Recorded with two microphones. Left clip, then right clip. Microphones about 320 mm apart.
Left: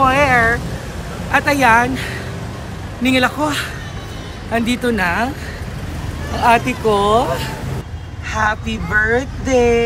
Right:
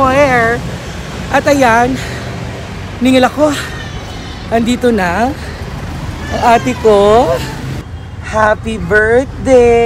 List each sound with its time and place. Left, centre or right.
0.0 s vehicle: centre
1.3 s speech: centre
6.3 s speech: centre